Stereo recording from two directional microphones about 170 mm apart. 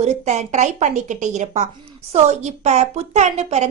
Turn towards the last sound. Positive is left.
turn(degrees=-40)  # may be behind; listen again after turning